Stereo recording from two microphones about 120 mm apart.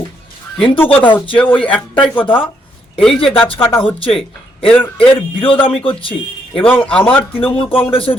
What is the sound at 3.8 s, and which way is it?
Speech, 50° left (ahead or behind).